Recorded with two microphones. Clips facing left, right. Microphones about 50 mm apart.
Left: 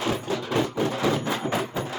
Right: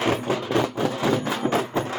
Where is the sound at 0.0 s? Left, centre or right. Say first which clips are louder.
Right 4 dB; right.